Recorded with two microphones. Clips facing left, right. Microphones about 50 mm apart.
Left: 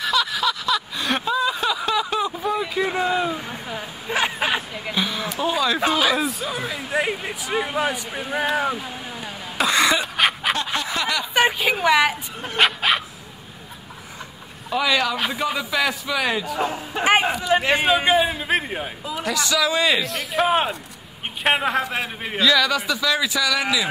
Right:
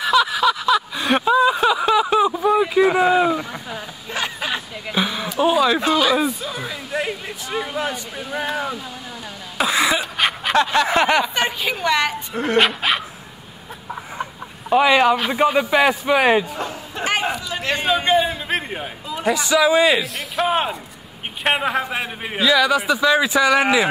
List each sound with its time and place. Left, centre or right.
0.0 s a sound: centre
3.2 s speech: right
3.7 s a sound: left
4.9 s a man's voice: centre
5.8 s speech: centre
9.6 s a sound: centre
10.5 s snicker: right
10.9 s a sound: right
11.3 s speech: centre
14.7 s a man's voice: right
16.5 s a man's voice: centre; by 17.6 s left
17.6 s a man's voice: centre
19.2 s a man's voice: centre; by 23.9 s right